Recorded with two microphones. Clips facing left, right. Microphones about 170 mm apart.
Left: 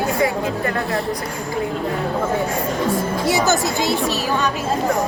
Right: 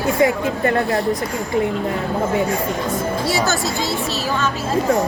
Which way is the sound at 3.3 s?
20° left (ahead or behind).